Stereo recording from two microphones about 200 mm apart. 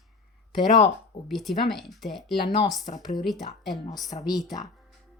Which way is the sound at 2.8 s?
20° left (ahead or behind).